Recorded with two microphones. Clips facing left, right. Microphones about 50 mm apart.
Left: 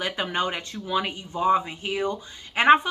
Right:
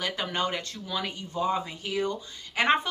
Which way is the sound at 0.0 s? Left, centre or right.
Left.